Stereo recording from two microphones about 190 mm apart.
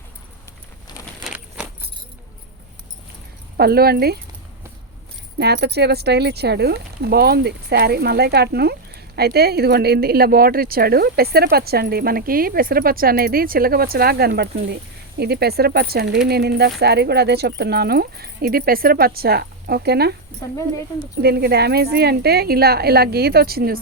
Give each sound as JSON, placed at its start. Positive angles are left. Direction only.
{"t": 3.6, "sound": "speech", "side_deg": -55}
{"t": 5.4, "sound": "speech", "side_deg": -60}
{"t": 21.2, "sound": "speech", "side_deg": -55}